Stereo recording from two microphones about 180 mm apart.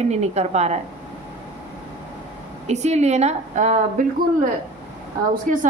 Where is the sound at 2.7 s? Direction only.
40° right (ahead or behind).